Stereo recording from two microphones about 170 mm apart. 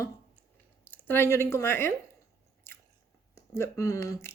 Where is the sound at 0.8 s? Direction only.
10° left (ahead or behind).